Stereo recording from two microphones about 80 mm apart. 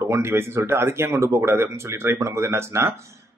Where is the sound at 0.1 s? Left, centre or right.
Right.